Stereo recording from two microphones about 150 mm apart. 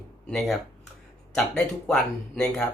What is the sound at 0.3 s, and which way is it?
Speech, centre (ahead or behind).